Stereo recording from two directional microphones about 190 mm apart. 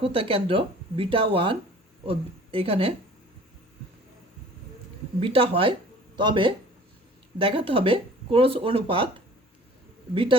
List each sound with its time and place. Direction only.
0.0 s speech: 30° right (ahead or behind)
5.2 s speech: 30° right (ahead or behind)